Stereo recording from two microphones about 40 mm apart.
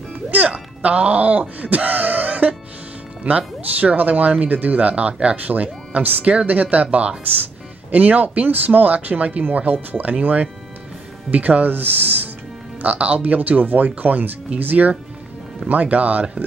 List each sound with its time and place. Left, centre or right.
0.3 s music: right
3.3 s speech: right
7.9 s speech: right
12.8 s speech: right
13.2 s speech: right